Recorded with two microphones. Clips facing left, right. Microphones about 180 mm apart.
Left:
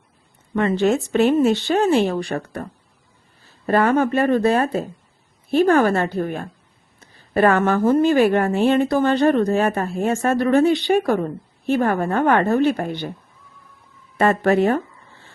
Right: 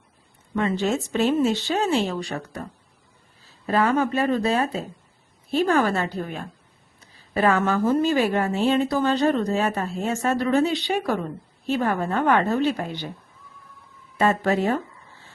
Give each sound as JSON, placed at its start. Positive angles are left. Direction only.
{"t": 0.5, "sound": "speech", "side_deg": 60}
{"t": 3.7, "sound": "speech", "side_deg": 55}
{"t": 14.2, "sound": "speech", "side_deg": 60}